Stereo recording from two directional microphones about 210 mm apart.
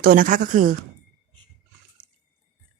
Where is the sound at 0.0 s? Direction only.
40° right (ahead or behind).